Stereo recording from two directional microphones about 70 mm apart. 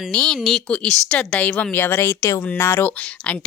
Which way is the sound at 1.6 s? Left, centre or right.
Left.